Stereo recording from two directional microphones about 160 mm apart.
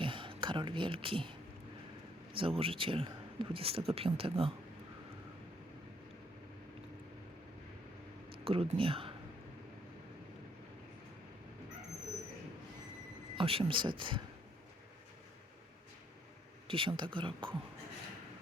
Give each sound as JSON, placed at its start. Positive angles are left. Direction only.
{"t": 0.0, "sound": "throat clearing", "side_deg": -30}
{"t": 2.3, "sound": "speech", "side_deg": -35}
{"t": 8.4, "sound": "speech", "side_deg": -35}
{"t": 13.3, "sound": "speech", "side_deg": -35}
{"t": 16.6, "sound": "speech", "side_deg": -35}